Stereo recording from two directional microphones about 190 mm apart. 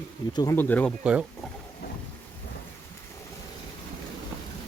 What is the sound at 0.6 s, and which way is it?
Speech, 10° left (ahead or behind).